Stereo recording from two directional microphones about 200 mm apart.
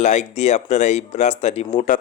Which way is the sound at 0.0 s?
35° left (ahead or behind).